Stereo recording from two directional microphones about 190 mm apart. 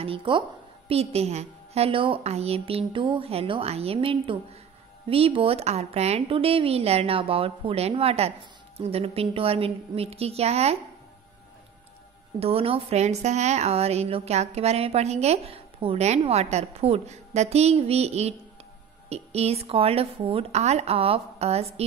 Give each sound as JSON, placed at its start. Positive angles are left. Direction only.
{"t": 0.0, "sound": "a woman's voice", "side_deg": -25}
{"t": 12.4, "sound": "speech", "side_deg": -30}